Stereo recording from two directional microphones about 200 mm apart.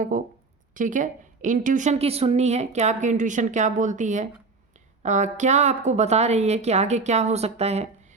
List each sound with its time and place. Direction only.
0.1 s a woman's voice: 40° right (ahead or behind)